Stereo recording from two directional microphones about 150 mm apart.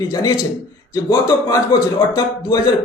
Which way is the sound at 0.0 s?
25° left (ahead or behind).